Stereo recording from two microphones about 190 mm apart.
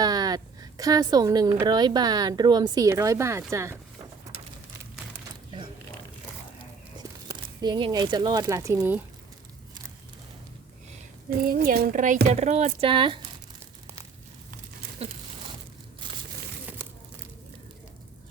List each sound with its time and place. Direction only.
0.0 s a sound: 20° right (ahead or behind)
1.6 s a woman's voice: 20° right (ahead or behind)
7.3 s speech: 20° right (ahead or behind)
11.3 s speech: 50° right (ahead or behind); by 13.2 s 25° right (ahead or behind)
14.5 s crumpling: 35° right (ahead or behind)